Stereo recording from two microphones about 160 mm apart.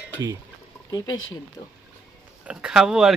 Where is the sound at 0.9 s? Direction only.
25° left (ahead or behind).